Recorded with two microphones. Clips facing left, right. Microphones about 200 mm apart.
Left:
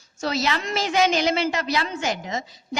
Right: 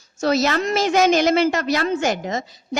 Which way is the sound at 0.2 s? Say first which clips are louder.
Right 6 dB; 45° right (ahead or behind).